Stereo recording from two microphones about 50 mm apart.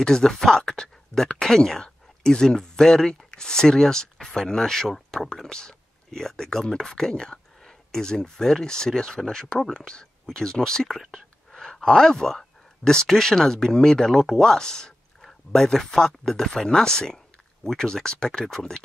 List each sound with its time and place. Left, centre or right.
0.0 s speech: centre